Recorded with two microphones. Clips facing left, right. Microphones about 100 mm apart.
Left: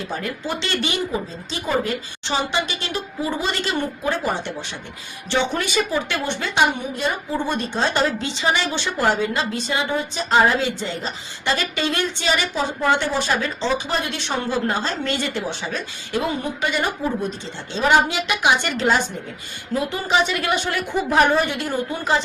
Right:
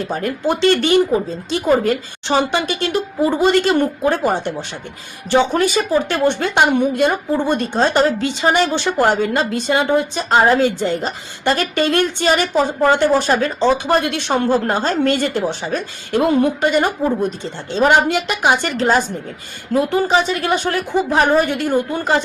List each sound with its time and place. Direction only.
0.0 s a woman's voice: 45° right (ahead or behind)
6.2 s a woman's voice: 55° right (ahead or behind); by 21.4 s 35° right (ahead or behind)
21.4 s a woman's voice: 50° right (ahead or behind)